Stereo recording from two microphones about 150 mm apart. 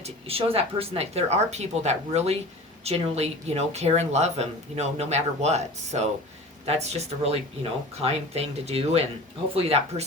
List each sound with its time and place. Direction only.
0.0 s speech: 40° right (ahead or behind)